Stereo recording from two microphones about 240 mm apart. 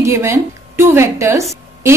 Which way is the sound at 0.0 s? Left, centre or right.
Centre.